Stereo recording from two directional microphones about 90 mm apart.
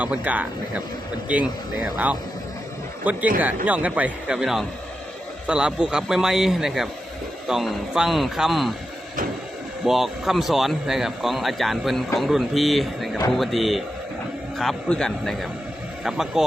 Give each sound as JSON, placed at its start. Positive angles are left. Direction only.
{"t": 0.0, "sound": "speech", "side_deg": -15}
{"t": 3.0, "sound": "speech", "side_deg": -15}
{"t": 9.8, "sound": "speech", "side_deg": -5}
{"t": 14.8, "sound": "speech", "side_deg": 10}